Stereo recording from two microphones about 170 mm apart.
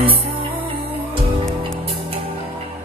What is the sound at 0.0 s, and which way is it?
Music, 30° right (ahead or behind).